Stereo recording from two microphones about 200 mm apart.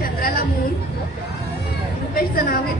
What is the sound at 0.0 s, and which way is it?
Chatter, 45° left (ahead or behind).